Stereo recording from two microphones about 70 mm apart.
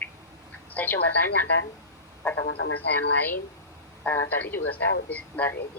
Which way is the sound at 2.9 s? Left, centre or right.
Left.